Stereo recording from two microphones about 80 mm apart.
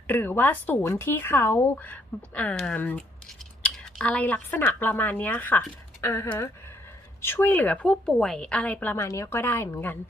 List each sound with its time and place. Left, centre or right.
0.1 s speech: left
6.0 s a woman's voice: left
9.0 s speech: left